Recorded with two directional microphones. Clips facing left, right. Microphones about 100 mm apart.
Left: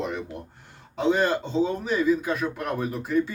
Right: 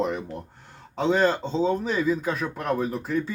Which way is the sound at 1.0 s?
10° left (ahead or behind).